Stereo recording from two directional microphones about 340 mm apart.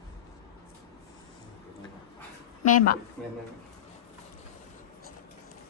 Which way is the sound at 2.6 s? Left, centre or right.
Left.